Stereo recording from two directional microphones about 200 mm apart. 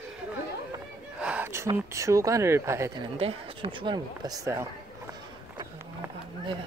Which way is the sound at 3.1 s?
30° right (ahead or behind).